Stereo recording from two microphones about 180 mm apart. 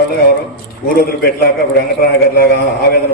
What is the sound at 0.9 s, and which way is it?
A man's voice, 55° left (ahead or behind).